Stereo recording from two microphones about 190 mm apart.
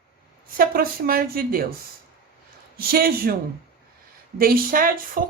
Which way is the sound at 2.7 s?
50° right (ahead or behind).